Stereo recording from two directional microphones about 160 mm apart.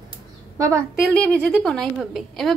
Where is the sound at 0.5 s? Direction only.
20° right (ahead or behind).